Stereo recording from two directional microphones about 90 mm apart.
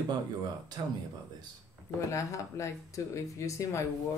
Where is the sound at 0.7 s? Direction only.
50° right (ahead or behind).